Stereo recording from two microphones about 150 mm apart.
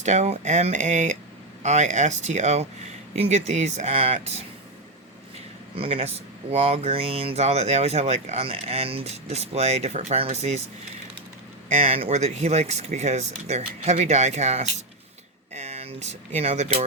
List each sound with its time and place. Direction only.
0.0 s speech: 50° right (ahead or behind)
5.7 s speech: 40° right (ahead or behind)
11.7 s speech: 45° right (ahead or behind)